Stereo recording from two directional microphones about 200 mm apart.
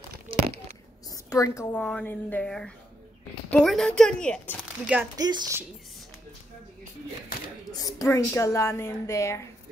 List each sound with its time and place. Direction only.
0.3 s a sound: 25° right (ahead or behind)
1.1 s a woman's voice: 15° left (ahead or behind)
1.8 s a woman's voice: 5° left (ahead or behind)
5.1 s speech: 20° right (ahead or behind)
7.8 s a woman's voice: 15° left (ahead or behind)